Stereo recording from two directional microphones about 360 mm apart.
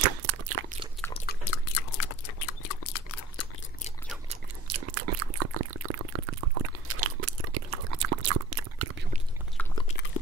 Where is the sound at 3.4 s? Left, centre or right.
Left.